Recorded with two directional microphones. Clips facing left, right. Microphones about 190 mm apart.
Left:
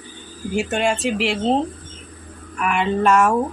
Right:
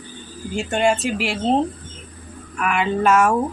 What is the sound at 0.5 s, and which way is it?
Speech, centre (ahead or behind).